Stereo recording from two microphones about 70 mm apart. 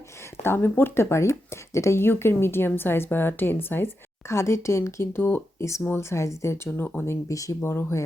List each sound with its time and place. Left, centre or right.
0.4 s speech: left
4.3 s speech: left
7.6 s speech: left